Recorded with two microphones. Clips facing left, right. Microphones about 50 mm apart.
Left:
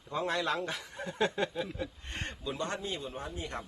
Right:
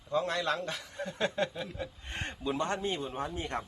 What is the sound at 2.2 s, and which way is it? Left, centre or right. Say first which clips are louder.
A man's voice: right 4 dB; right.